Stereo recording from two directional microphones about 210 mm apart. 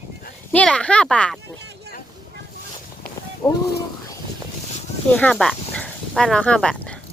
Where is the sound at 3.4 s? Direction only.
15° left (ahead or behind).